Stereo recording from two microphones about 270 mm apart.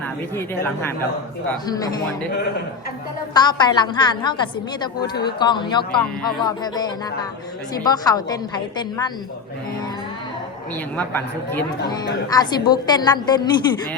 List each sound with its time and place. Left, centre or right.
0.3 s a woman's voice: centre
3.3 s a woman's voice: centre
6.0 s speech: centre
6.4 s a woman's voice: centre
10.9 s a woman's voice: centre